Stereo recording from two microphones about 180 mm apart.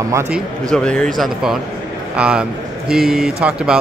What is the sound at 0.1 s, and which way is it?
Speech, 15° right (ahead or behind).